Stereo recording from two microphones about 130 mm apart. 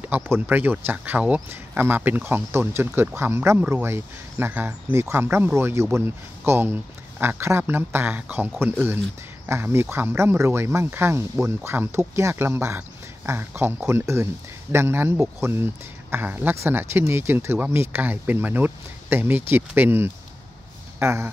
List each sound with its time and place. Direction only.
0.0 s speech: 15° right (ahead or behind)
9.5 s speech: 20° right (ahead or behind)